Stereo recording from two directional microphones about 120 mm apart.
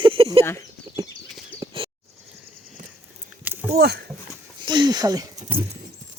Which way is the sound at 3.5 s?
15° right (ahead or behind).